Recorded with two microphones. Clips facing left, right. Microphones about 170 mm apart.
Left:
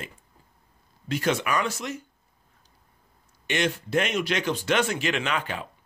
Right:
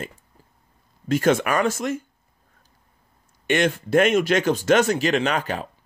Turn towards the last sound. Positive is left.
turn(degrees=-40)  # may be behind; listen again after turning